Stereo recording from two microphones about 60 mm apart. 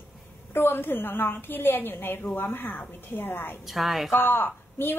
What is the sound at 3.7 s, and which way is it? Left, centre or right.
Speech, centre.